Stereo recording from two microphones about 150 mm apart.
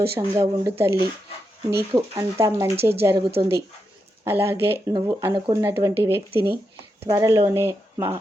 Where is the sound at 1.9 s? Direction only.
20° right (ahead or behind).